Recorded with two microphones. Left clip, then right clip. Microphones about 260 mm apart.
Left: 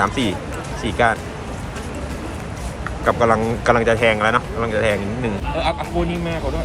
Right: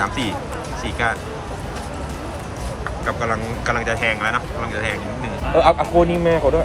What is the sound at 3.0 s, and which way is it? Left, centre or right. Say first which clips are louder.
A man's voice: left 7 dB; centre.